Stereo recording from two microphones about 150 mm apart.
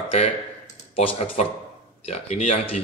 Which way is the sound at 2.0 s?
45° left (ahead or behind).